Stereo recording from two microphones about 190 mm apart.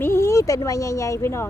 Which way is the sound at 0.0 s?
15° left (ahead or behind).